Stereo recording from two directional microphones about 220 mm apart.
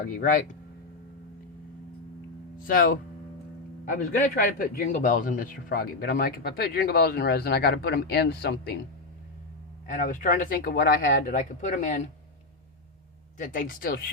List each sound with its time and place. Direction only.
0.0 s speech: 35° left (ahead or behind)
2.6 s speech: 40° left (ahead or behind)
4.4 s speech: 40° left (ahead or behind)
9.8 s speech: 35° left (ahead or behind)
13.4 s speech: 40° left (ahead or behind)